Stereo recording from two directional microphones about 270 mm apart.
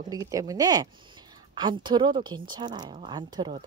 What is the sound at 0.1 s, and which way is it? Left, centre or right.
A woman's voice, centre.